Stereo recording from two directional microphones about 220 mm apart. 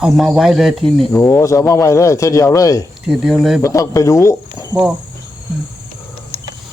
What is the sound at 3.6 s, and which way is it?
A man's voice, 15° left (ahead or behind).